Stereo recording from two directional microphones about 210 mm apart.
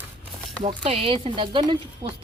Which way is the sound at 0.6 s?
25° right (ahead or behind).